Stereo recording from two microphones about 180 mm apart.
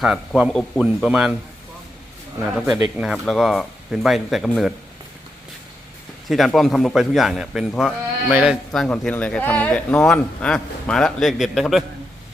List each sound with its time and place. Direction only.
0.0 s speech: 5° right (ahead or behind)
2.6 s speech: 5° right (ahead or behind)
6.2 s speech: centre (ahead or behind)